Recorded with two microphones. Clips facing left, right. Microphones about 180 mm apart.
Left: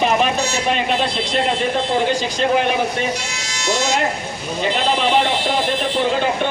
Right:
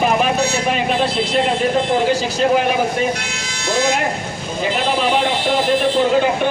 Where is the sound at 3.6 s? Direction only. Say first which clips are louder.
Right 2 dB; 55° right (ahead or behind).